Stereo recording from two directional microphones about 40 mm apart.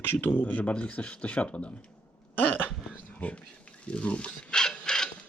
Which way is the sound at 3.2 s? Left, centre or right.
Left.